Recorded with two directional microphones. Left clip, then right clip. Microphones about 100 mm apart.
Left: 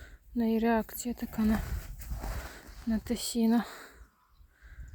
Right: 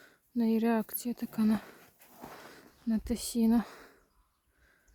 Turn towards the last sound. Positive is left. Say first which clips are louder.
# left 1 dB
turn(degrees=-35)  # may be behind; listen again after turning